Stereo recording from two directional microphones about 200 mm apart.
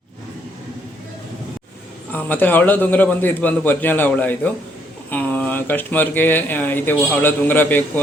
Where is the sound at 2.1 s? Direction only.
10° left (ahead or behind).